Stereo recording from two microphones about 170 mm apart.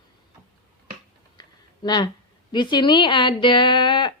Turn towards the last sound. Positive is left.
turn(degrees=30)  # may be behind; listen again after turning